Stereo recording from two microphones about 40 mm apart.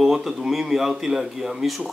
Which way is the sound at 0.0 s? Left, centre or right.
Centre.